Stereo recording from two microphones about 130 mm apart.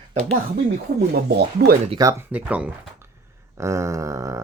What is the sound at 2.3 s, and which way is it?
Speech, 10° right (ahead or behind).